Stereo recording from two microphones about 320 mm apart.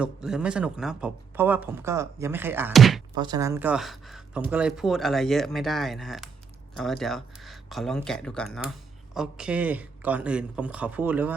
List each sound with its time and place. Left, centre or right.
0.0 s speech: centre
3.2 s speech: centre